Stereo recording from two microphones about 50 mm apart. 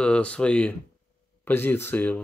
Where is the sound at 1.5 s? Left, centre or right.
Left.